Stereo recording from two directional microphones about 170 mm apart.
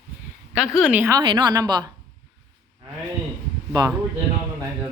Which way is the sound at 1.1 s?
25° right (ahead or behind).